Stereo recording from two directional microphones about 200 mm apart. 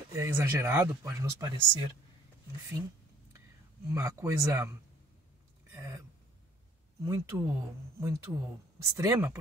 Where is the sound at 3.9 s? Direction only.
15° right (ahead or behind).